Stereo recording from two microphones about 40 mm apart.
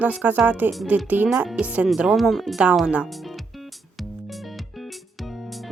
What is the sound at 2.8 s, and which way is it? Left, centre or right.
Speech, right.